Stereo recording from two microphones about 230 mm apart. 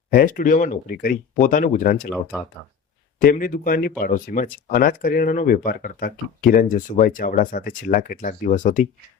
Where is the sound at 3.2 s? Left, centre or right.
Left.